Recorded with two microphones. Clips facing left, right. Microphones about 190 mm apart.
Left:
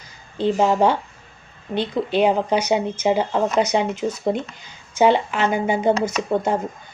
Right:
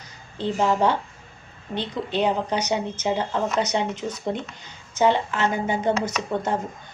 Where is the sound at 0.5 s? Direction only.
30° left (ahead or behind).